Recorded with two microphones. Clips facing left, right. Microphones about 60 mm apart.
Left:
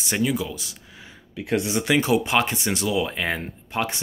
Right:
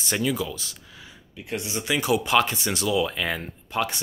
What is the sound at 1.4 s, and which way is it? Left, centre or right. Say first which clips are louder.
Speech: left 7 dB; left.